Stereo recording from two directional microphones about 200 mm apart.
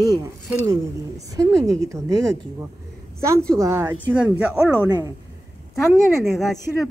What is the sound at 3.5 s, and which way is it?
Speech, 15° right (ahead or behind).